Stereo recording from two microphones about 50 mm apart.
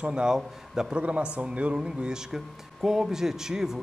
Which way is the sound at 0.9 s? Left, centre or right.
Right.